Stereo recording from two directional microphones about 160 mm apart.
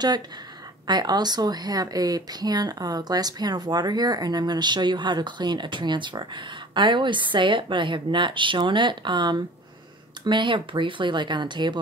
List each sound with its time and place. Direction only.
0.8 s speech: 25° right (ahead or behind)